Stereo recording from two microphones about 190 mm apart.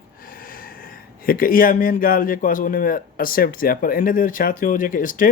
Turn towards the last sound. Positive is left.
turn(degrees=45)  # may be behind; listen again after turning